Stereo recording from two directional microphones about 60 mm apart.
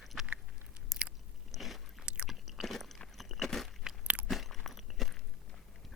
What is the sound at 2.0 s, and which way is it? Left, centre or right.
Chewing, centre.